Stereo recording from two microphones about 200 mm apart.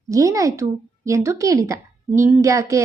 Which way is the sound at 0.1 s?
15° right (ahead or behind).